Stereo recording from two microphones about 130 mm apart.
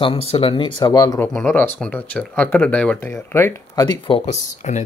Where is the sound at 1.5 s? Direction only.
15° left (ahead or behind); by 4.2 s 35° left (ahead or behind).